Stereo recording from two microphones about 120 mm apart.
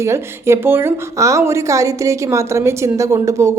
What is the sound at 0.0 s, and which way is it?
A woman's voice, 20° right (ahead or behind).